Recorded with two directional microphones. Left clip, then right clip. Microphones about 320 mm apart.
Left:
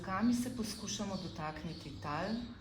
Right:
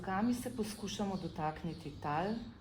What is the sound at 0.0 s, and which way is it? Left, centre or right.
A woman's voice, right.